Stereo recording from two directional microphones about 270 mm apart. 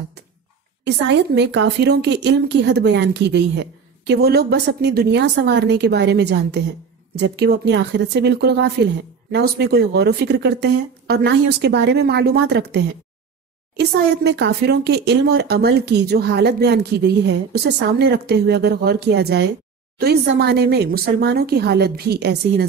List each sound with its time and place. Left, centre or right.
0.8 s speech: right